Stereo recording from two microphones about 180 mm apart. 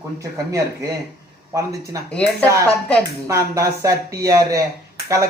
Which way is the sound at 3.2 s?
15° right (ahead or behind).